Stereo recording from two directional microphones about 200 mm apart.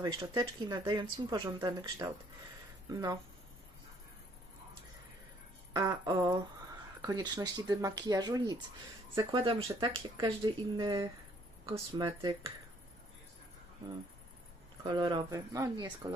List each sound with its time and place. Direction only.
0.0 s speech: 20° right (ahead or behind)
5.7 s speech: 15° right (ahead or behind)
14.8 s speech: 25° right (ahead or behind)